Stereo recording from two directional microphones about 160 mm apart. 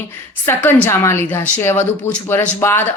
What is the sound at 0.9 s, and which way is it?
A woman's voice, 15° left (ahead or behind).